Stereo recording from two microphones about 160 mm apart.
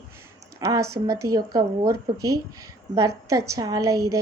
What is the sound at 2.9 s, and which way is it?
Speech, 20° right (ahead or behind).